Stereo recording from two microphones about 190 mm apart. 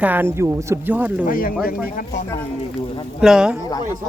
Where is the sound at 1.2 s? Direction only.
50° left (ahead or behind).